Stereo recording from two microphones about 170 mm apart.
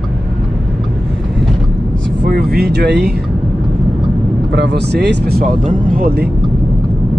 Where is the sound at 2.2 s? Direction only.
65° right (ahead or behind).